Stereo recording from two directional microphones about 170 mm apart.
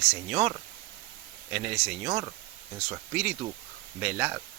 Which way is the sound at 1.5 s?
10° right (ahead or behind).